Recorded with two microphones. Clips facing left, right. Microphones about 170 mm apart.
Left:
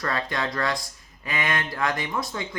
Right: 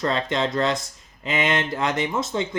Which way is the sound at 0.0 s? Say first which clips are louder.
Right 5 dB; 20° right (ahead or behind).